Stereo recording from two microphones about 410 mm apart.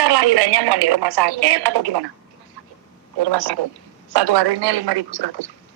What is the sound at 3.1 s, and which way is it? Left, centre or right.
A woman's voice, right.